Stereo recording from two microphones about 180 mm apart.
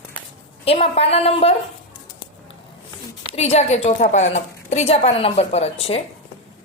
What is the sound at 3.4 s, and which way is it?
A woman's voice, 35° left (ahead or behind).